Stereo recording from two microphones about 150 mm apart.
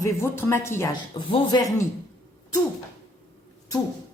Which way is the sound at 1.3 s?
30° left (ahead or behind).